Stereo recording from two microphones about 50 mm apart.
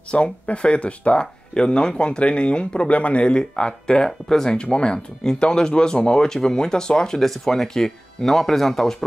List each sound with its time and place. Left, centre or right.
0.1 s speech: left; by 8.9 s centre